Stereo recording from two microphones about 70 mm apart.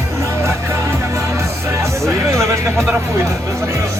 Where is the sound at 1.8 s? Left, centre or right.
Right.